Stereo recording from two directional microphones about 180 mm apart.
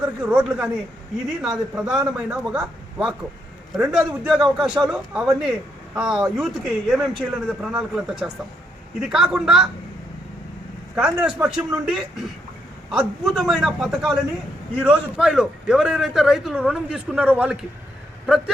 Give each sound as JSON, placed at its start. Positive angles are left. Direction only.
{"t": 0.0, "sound": "a man's voice", "side_deg": -5}
{"t": 10.9, "sound": "a man's voice", "side_deg": -5}